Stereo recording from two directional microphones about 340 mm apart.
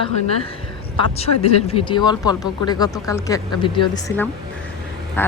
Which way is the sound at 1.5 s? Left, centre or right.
Centre.